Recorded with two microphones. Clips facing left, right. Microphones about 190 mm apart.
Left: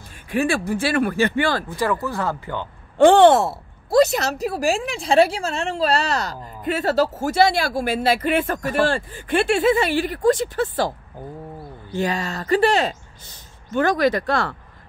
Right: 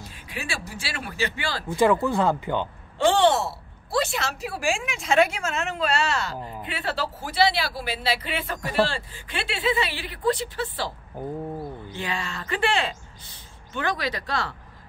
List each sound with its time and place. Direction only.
0.0 s a man's voice: 50° left (ahead or behind)
1.8 s speech: 25° right (ahead or behind)
3.0 s speech: 55° left (ahead or behind)
11.9 s speech: 45° left (ahead or behind)